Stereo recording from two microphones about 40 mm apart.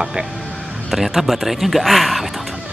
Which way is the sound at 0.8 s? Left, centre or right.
Centre.